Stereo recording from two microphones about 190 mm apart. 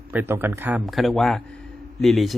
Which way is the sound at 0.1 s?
10° right (ahead or behind).